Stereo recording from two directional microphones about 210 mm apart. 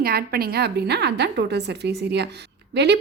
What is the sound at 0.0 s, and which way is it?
A woman's voice, 45° right (ahead or behind).